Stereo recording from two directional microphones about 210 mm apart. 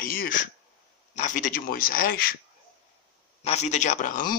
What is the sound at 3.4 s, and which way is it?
Speech, 30° left (ahead or behind).